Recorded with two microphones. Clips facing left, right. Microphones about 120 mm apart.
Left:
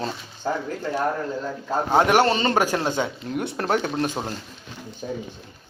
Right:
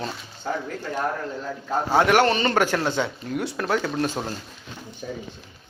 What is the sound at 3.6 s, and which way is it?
Speech, 35° left (ahead or behind).